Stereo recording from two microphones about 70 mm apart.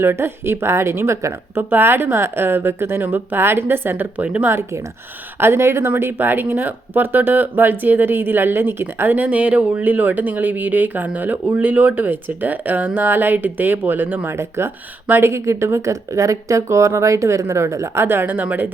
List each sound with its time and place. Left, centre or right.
0.0 s speech: right
1.7 s speech: right
4.4 s speech: right
14.3 s speech: right
15.0 s speech: right
15.3 s speech: right